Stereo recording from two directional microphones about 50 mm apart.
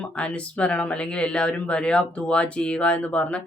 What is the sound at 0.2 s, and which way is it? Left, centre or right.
Speech, left.